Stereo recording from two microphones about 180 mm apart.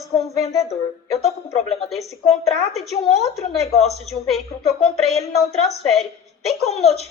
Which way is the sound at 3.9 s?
Centre (ahead or behind).